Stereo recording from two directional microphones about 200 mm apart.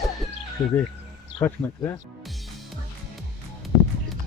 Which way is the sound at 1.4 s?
15° left (ahead or behind).